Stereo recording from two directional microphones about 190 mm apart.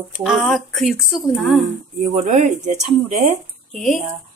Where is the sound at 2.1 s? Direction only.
40° right (ahead or behind).